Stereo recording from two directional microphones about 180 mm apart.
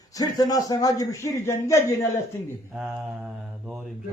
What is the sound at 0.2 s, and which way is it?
A man's voice, 20° left (ahead or behind).